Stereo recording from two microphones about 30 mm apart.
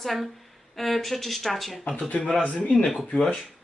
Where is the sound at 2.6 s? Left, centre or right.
Left.